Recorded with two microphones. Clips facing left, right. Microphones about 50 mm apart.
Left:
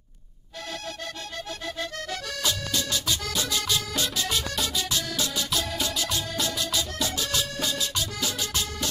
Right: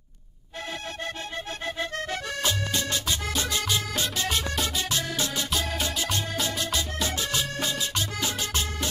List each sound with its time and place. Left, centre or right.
1.8 s music: right
4.7 s music: right